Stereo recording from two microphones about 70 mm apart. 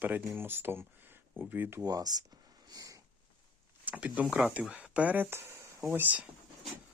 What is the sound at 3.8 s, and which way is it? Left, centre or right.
Speech, right.